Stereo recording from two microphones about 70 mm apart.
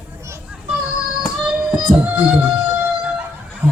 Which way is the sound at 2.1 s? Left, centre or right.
Centre.